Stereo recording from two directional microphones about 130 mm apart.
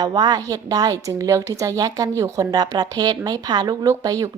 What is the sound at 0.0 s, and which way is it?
A woman's voice, 35° right (ahead or behind).